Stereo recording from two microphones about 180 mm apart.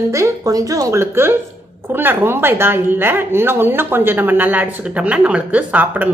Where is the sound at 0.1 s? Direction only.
20° right (ahead or behind).